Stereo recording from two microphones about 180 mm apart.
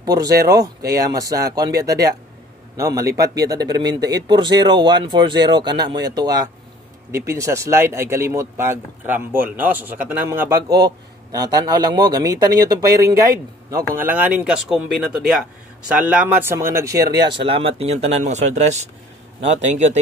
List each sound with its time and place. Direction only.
0.0 s speech: 20° right (ahead or behind); by 20.0 s 40° right (ahead or behind)